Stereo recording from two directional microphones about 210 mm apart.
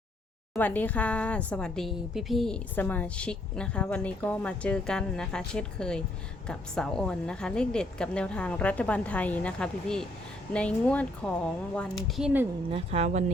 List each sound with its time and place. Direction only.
0.5 s a woman's voice: 10° left (ahead or behind)
12.7 s speech: 30° right (ahead or behind)